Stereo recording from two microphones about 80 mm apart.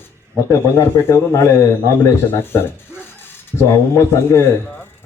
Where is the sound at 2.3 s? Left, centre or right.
Left.